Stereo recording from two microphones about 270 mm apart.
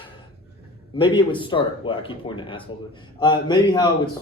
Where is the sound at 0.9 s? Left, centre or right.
Centre.